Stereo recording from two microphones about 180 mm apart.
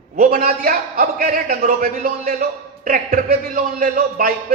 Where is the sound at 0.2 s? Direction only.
50° right (ahead or behind).